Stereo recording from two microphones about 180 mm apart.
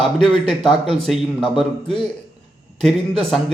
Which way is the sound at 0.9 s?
Centre (ahead or behind).